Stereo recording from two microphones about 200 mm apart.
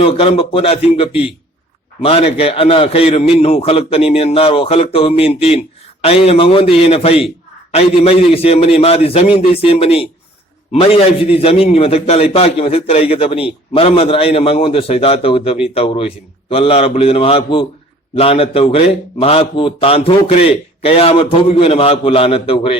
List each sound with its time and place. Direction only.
0.0 s a man's voice: 25° left (ahead or behind)